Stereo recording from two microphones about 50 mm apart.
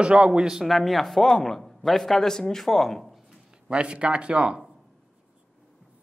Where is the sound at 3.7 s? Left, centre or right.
Right.